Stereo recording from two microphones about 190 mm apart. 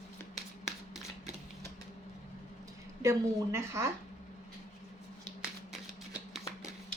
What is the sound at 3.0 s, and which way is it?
Speech, 15° right (ahead or behind).